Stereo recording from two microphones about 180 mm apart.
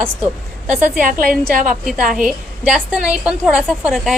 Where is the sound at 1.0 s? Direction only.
50° right (ahead or behind).